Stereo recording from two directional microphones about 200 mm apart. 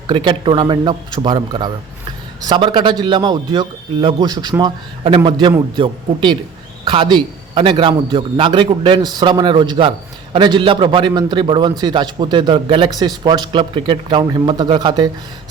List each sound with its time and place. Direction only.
0.1 s a man's voice: 20° right (ahead or behind)